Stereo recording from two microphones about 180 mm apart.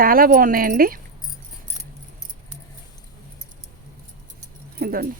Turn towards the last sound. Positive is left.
turn(degrees=-55)  # may be behind; listen again after turning